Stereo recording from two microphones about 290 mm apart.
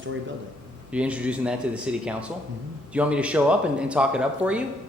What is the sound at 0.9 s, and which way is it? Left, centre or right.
Speech, centre.